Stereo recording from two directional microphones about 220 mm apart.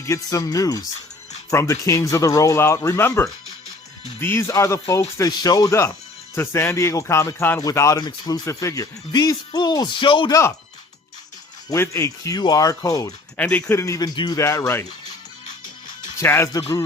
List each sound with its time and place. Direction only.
0.0 s speech: 15° left (ahead or behind)
11.7 s speech: 15° left (ahead or behind)
16.2 s speech: 10° left (ahead or behind)